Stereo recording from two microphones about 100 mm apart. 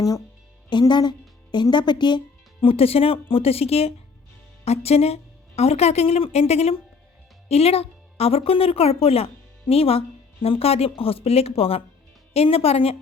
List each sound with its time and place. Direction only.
0.7 s music: 50° left (ahead or behind)
1.7 s a woman's voice: 50° left (ahead or behind); by 13.0 s 80° left